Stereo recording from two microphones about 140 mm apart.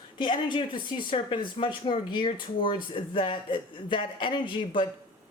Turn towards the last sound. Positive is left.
turn(degrees=35)  # may be behind; listen again after turning